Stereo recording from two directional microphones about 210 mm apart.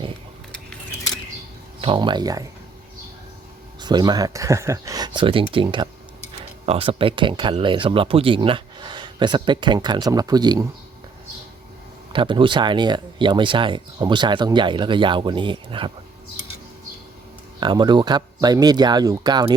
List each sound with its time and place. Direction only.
1.8 s speech: 25° right (ahead or behind)
3.8 s speech: 20° right (ahead or behind)
12.1 s speech: 25° right (ahead or behind)
17.6 s speech: 20° right (ahead or behind)